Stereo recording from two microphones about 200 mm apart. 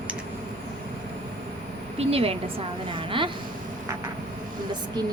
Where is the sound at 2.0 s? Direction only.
30° right (ahead or behind).